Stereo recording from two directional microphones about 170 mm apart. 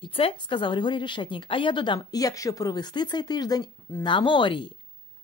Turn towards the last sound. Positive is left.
turn(degrees=30)  # may be behind; listen again after turning